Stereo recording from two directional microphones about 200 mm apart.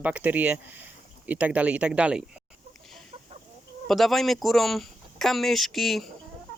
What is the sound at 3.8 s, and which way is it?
Speech, centre (ahead or behind).